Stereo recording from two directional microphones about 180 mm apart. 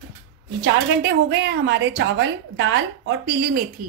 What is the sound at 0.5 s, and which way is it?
A woman's voice, 70° right (ahead or behind).